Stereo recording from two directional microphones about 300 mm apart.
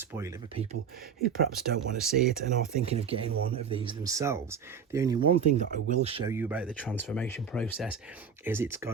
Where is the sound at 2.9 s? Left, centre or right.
Centre.